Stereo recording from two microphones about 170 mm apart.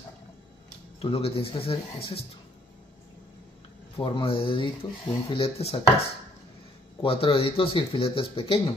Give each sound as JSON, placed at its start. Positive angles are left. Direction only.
{"t": 0.9, "sound": "speech", "side_deg": 35}
{"t": 4.0, "sound": "speech", "side_deg": 35}